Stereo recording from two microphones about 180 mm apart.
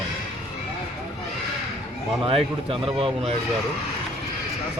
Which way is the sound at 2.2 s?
30° right (ahead or behind).